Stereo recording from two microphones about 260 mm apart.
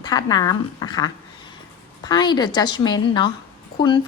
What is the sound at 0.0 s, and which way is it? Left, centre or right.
A woman's voice, centre.